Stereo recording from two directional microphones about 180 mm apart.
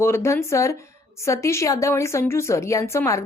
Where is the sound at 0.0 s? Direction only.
15° left (ahead or behind).